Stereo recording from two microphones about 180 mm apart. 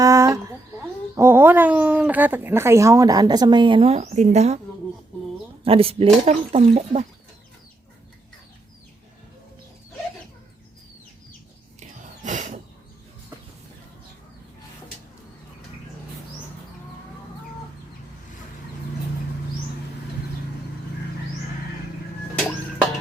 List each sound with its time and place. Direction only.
0.0 s speech: 20° right (ahead or behind); by 4.6 s 40° right (ahead or behind)
5.6 s speech: 35° right (ahead or behind)
11.8 s a sound: 45° right (ahead or behind)